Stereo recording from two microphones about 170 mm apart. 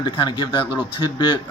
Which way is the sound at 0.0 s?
25° left (ahead or behind).